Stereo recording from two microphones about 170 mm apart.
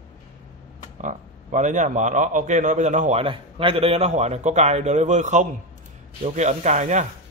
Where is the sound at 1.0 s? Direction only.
45° right (ahead or behind).